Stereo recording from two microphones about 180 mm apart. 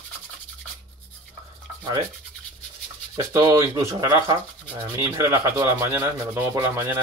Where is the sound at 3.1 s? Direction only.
20° right (ahead or behind).